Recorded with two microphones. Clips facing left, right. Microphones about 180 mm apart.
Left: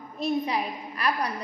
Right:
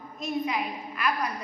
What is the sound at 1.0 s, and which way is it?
Speech, 35° left (ahead or behind).